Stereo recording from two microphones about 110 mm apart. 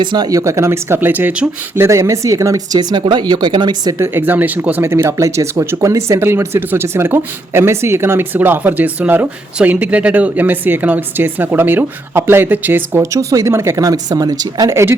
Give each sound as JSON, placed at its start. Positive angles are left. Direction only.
{"t": 0.0, "sound": "speech", "side_deg": -45}
{"t": 0.3, "sound": "speech", "side_deg": -30}
{"t": 1.8, "sound": "speech", "side_deg": -25}
{"t": 2.7, "sound": "speech", "side_deg": -45}
{"t": 3.9, "sound": "speech", "side_deg": -20}
{"t": 13.0, "sound": "speech", "side_deg": -35}